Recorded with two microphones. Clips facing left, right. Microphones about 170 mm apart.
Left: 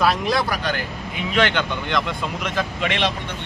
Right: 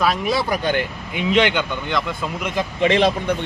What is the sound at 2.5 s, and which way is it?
Speech, 15° right (ahead or behind).